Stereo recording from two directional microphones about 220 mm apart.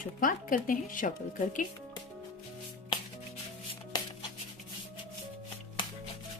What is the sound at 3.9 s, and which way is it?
Music, 15° left (ahead or behind).